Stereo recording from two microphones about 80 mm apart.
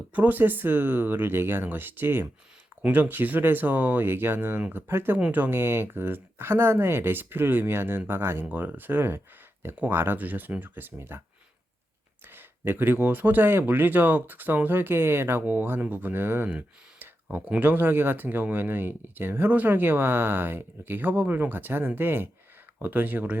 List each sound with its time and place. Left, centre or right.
0.1 s speech: right
12.2 s speech: right
16.5 s a sound: centre
17.3 s speech: right